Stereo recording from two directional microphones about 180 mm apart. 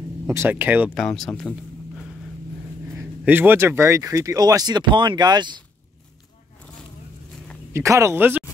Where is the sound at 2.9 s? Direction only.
10° right (ahead or behind).